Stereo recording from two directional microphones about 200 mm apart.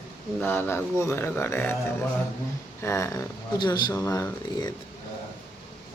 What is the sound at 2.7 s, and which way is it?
Speech, 15° left (ahead or behind).